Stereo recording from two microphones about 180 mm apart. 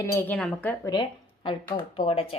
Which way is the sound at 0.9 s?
25° left (ahead or behind).